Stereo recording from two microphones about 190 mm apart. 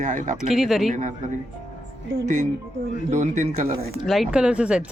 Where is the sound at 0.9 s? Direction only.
40° right (ahead or behind).